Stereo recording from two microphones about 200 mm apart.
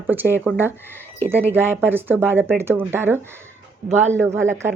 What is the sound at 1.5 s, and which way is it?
A woman's voice, 10° right (ahead or behind).